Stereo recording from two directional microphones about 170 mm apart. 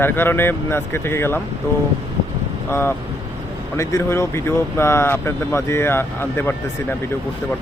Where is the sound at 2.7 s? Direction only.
15° left (ahead or behind).